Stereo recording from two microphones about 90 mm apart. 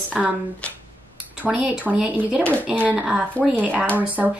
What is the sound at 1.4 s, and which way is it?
Speech, 10° right (ahead or behind).